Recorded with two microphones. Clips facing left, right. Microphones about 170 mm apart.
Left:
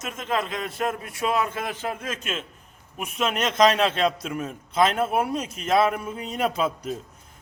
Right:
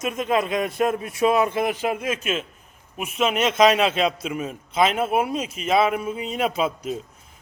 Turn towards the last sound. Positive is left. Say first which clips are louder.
# right 1 dB
turn(degrees=-5)  # may be behind; listen again after turning